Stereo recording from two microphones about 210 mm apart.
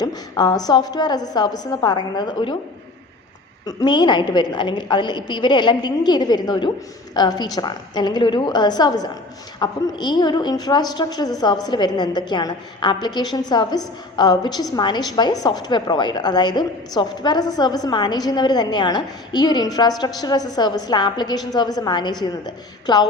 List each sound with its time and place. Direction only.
0.0 s a woman's voice: 20° left (ahead or behind)
3.7 s a woman's voice: 20° left (ahead or behind)